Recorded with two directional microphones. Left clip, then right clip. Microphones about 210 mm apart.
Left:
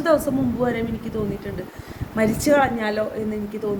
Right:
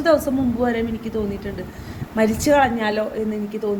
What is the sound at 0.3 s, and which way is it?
Speech, 10° left (ahead or behind).